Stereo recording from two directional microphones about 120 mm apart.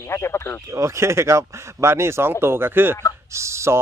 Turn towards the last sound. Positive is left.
turn(degrees=-25)  # may be behind; listen again after turning